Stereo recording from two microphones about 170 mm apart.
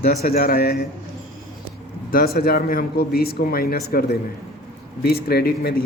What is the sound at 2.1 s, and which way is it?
Speech, 60° left (ahead or behind).